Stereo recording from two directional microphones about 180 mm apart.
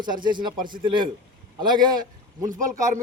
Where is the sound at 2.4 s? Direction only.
45° right (ahead or behind).